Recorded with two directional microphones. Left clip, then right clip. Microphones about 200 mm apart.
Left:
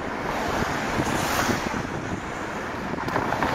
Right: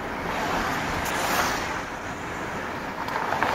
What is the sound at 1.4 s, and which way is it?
Vehicle, 45° left (ahead or behind).